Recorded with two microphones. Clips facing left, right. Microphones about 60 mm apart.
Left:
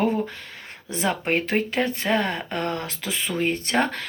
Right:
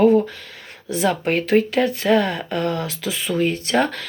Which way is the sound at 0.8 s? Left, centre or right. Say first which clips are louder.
Right 5 dB; left.